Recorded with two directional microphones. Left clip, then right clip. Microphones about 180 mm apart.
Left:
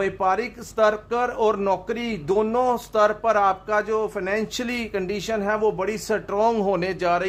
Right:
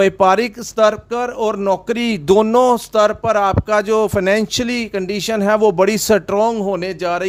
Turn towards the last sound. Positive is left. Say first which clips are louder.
# right 3 dB
turn(degrees=-30)  # may be behind; listen again after turning